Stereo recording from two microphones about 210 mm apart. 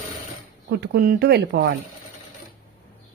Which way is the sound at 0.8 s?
45° right (ahead or behind).